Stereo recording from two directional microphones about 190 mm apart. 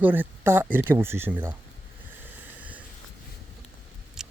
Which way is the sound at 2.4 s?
10° right (ahead or behind).